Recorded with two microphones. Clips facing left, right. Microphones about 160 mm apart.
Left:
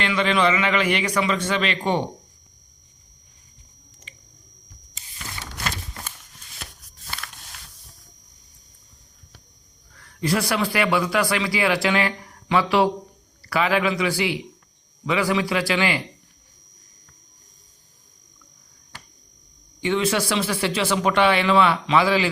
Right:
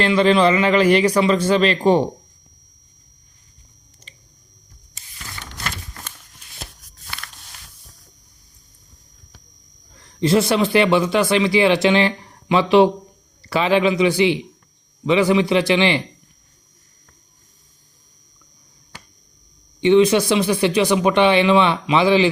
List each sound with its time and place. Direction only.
0.0 s a man's voice: 35° right (ahead or behind)
10.0 s a man's voice: 25° right (ahead or behind)
19.8 s a man's voice: 20° right (ahead or behind)